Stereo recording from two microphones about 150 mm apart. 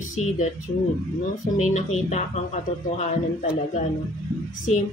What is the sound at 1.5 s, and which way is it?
Speech, 55° left (ahead or behind).